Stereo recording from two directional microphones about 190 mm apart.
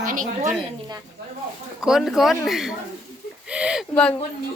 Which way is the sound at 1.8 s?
Centre (ahead or behind).